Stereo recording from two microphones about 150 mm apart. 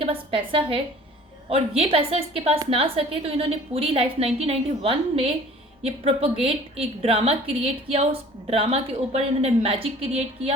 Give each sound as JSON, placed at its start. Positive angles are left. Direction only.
{"t": 0.0, "sound": "a woman's voice", "side_deg": -35}
{"t": 8.4, "sound": "a woman's voice", "side_deg": -40}